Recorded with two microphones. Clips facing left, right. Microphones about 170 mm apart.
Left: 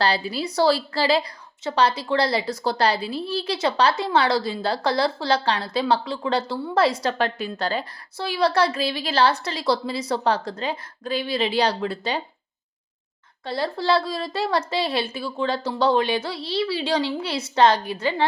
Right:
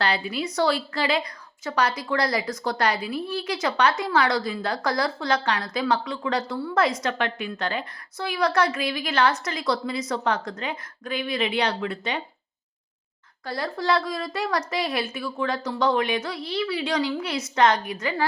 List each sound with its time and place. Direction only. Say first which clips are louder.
0.0 s a woman's voice: left 2 dB; 35° left (ahead or behind)
13.4 s a woman's voice: left 3 dB; 30° left (ahead or behind)